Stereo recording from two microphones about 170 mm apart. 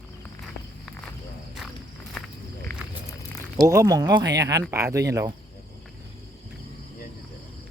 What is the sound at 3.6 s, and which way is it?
Speech, 20° right (ahead or behind).